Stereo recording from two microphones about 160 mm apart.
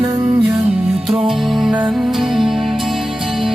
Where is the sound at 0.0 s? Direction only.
30° right (ahead or behind).